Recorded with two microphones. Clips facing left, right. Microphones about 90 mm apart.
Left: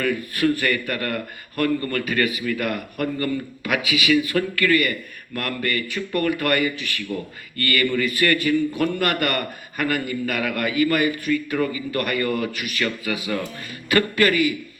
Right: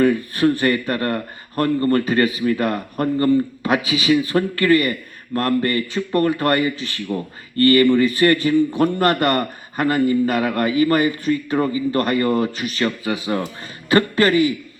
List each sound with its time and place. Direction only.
0.0 s a man's voice: 30° right (ahead or behind)